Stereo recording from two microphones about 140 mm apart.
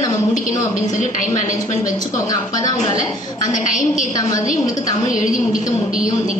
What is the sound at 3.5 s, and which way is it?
Speech, 65° left (ahead or behind).